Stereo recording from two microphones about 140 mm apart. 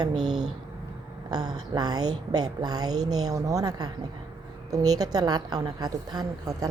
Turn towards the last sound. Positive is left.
turn(degrees=-25)  # may be behind; listen again after turning